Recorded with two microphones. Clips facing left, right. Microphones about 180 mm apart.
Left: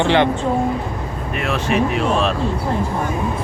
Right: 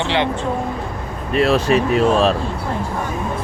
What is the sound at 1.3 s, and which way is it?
Speech, 35° right (ahead or behind).